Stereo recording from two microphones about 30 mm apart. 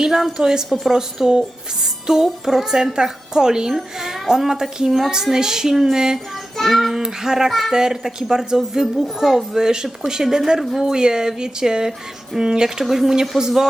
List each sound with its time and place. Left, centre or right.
0.0 s a woman's voice: centre
4.9 s child singing: centre
5.1 s a woman's voice: centre
6.6 s child singing: centre
6.9 s a woman's voice: centre